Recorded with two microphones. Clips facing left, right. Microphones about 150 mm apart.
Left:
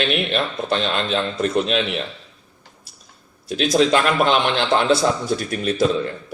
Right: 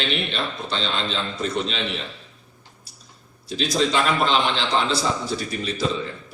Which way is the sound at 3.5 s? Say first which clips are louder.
Left 5 dB; 65° left (ahead or behind).